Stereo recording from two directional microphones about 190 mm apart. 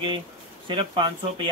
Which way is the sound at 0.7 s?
25° right (ahead or behind).